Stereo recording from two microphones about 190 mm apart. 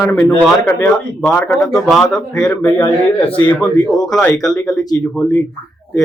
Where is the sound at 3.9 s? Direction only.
20° left (ahead or behind).